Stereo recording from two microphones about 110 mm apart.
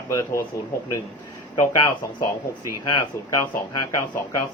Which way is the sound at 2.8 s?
30° left (ahead or behind).